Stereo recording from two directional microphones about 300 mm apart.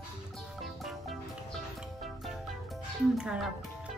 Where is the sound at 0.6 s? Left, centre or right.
Centre.